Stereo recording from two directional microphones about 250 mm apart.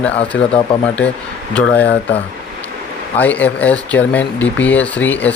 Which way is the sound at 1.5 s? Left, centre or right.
Centre.